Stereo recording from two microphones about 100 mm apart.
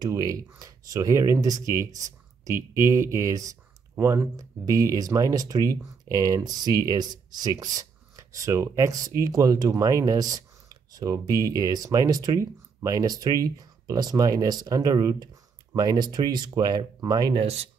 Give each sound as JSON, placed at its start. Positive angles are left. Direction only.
{"t": 0.0, "sound": "speech", "side_deg": -40}
{"t": 17.3, "sound": "speech", "side_deg": -80}